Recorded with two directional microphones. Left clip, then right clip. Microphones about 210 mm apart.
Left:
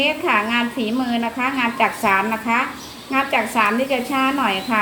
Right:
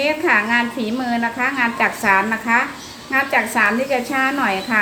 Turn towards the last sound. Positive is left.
turn(degrees=-20)  # may be behind; listen again after turning